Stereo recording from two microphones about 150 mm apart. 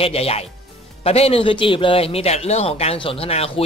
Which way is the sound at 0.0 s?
40° left (ahead or behind).